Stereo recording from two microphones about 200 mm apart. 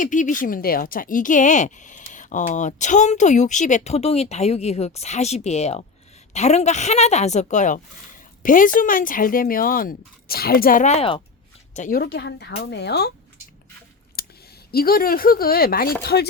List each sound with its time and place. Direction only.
0.0 s speech: 40° left (ahead or behind)
11.7 s speech: 40° left (ahead or behind)
14.2 s a sound: 50° left (ahead or behind)
14.7 s speech: 50° left (ahead or behind)
16.0 s chopping: 55° left (ahead or behind)